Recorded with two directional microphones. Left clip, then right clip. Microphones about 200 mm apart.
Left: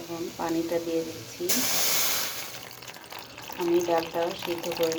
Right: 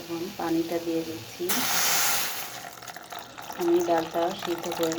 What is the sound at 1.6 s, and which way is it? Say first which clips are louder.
Speech: right 4 dB; 20° left (ahead or behind).